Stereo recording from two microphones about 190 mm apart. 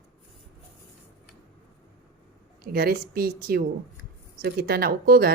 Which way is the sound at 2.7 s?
55° right (ahead or behind).